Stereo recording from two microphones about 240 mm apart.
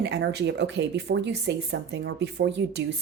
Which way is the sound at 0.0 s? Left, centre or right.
Right.